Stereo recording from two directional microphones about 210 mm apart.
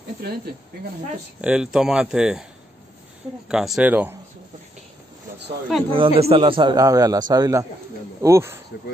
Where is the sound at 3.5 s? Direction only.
5° right (ahead or behind).